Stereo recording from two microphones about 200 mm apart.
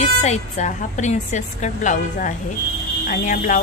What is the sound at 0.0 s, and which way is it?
Speech, 35° left (ahead or behind).